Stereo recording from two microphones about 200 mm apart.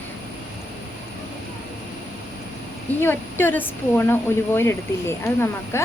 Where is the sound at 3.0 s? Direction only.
10° left (ahead or behind).